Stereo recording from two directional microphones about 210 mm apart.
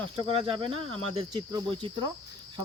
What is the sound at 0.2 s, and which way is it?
Speech, 25° right (ahead or behind).